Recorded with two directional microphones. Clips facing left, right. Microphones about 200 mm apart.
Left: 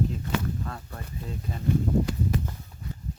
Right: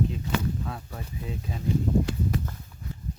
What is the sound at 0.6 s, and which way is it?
Speech, 5° right (ahead or behind).